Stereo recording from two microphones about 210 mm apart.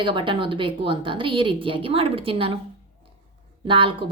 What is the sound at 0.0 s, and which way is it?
Speech, 25° right (ahead or behind).